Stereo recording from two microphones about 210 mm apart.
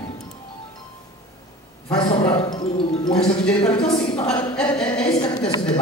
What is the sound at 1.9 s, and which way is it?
A woman's voice, 25° left (ahead or behind).